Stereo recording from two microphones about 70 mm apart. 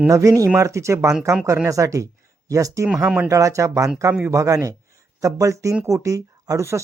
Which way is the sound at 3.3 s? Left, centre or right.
Right.